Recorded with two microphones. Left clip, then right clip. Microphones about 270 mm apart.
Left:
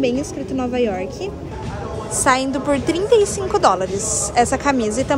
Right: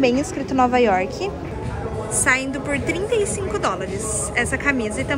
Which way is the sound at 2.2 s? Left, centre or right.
Centre.